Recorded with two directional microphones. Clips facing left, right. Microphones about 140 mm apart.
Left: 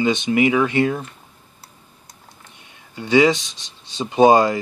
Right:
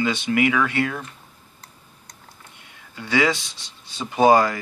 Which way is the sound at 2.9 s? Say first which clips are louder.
Left 6 dB; 20° left (ahead or behind).